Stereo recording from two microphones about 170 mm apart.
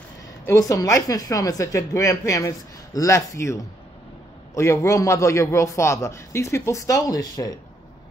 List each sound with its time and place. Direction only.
0.5 s a woman's voice: 20° left (ahead or behind)
4.6 s a man's voice: 15° left (ahead or behind)